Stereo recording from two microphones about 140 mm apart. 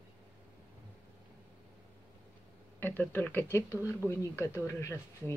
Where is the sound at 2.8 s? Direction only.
15° left (ahead or behind).